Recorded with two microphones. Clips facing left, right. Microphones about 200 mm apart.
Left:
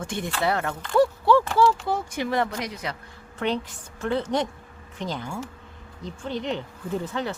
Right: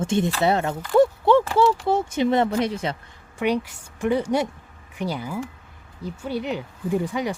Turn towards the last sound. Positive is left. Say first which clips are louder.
# right 4 dB
turn(degrees=-10)  # may be behind; listen again after turning